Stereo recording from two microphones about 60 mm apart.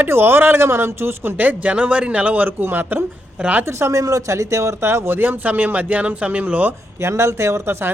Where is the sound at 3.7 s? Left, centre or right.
Right.